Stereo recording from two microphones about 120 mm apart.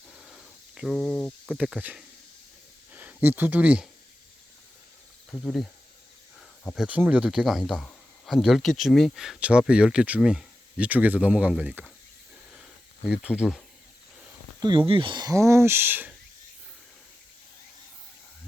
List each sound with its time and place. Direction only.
0.1 s cricket: 5° right (ahead or behind)
1.5 s speech: 5° right (ahead or behind)
2.9 s speech: 15° right (ahead or behind)
6.7 s speech: 10° right (ahead or behind)
13.1 s speech: 10° right (ahead or behind)
14.6 s speech: 40° right (ahead or behind)
15.3 s speech: 25° right (ahead or behind)